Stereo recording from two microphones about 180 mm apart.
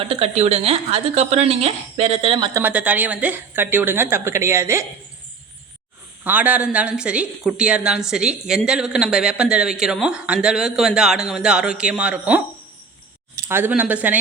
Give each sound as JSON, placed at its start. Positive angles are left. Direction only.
{"t": 0.0, "sound": "a woman's voice", "side_deg": -30}
{"t": 2.5, "sound": "a woman's voice", "side_deg": -10}
{"t": 6.2, "sound": "speech", "side_deg": -10}
{"t": 13.5, "sound": "a woman's voice", "side_deg": -10}